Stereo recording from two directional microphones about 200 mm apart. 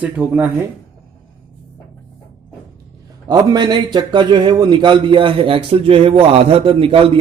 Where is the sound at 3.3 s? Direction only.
20° right (ahead or behind).